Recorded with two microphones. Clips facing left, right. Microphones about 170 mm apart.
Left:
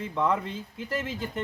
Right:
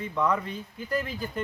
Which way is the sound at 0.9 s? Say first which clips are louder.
Right 2 dB; 20° left (ahead or behind).